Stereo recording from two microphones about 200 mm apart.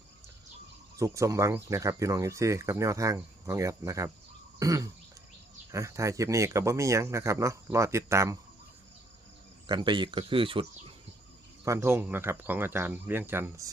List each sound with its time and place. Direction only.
0.9 s speech: 15° right (ahead or behind)
9.6 s speech: 25° right (ahead or behind)
11.6 s speech: 15° right (ahead or behind)